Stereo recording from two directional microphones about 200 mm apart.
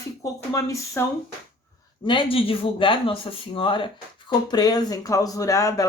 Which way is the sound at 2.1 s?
25° left (ahead or behind).